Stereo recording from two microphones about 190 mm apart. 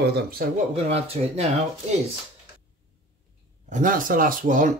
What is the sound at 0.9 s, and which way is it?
Speech, 35° right (ahead or behind).